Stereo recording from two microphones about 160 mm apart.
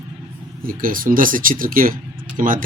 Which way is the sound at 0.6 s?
60° right (ahead or behind).